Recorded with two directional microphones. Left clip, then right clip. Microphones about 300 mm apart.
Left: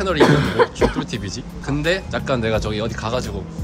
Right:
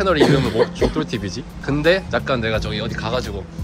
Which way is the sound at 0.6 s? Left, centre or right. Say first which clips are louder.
Left 1 dB; centre.